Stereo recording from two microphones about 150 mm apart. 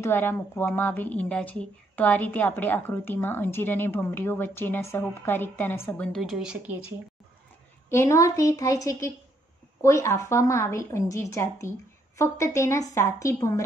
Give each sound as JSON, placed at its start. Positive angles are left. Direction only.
{"t": 0.0, "sound": "a woman's voice", "side_deg": 15}
{"t": 7.9, "sound": "a woman's voice", "side_deg": 20}